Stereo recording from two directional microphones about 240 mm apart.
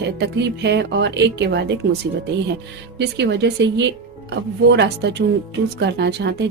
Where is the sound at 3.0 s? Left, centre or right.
Right.